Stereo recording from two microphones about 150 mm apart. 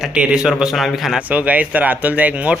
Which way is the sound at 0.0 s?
5° right (ahead or behind).